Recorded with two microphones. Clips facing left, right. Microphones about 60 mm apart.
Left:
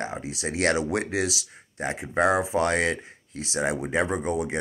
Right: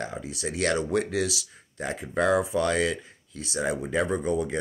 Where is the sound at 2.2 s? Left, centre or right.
Left.